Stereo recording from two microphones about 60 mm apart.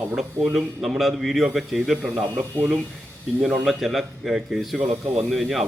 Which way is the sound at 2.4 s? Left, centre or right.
Right.